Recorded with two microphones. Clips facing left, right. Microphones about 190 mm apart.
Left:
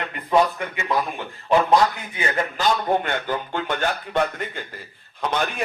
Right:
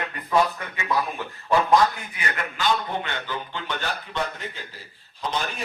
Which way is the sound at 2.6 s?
45° left (ahead or behind).